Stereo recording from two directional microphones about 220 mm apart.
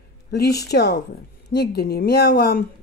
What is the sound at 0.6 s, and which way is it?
Speech, 50° left (ahead or behind).